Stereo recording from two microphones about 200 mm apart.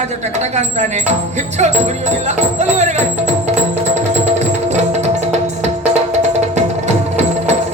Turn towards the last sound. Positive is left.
turn(degrees=-35)  # may be behind; listen again after turning